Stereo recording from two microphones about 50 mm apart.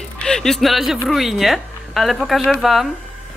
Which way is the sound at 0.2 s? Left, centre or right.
Centre.